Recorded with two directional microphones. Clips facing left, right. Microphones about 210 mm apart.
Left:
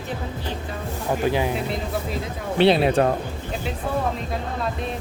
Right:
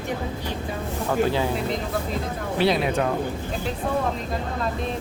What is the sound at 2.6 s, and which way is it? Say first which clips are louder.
Speech: left 5 dB; 30° left (ahead or behind).